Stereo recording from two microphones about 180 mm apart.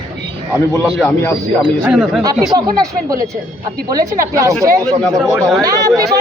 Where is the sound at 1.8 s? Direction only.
5° right (ahead or behind).